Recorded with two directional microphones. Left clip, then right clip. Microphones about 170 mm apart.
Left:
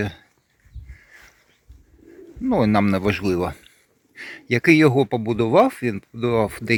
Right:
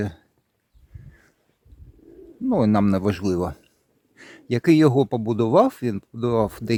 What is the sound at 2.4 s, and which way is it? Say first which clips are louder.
Speech: left 2 dB; 20° right (ahead or behind).